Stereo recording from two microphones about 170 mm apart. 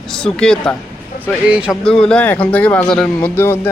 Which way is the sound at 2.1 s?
5° left (ahead or behind).